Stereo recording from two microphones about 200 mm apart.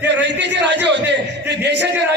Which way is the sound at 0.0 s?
65° right (ahead or behind).